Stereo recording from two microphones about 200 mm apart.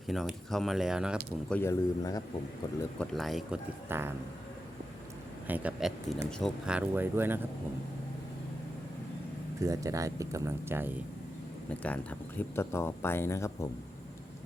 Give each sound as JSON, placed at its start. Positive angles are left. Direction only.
{"t": 0.1, "sound": "speech", "side_deg": 0}
{"t": 1.5, "sound": "speech", "side_deg": 15}
{"t": 3.0, "sound": "speech", "side_deg": 0}
{"t": 5.5, "sound": "speech", "side_deg": -10}
{"t": 9.6, "sound": "speech", "side_deg": -15}
{"t": 11.7, "sound": "speech", "side_deg": 5}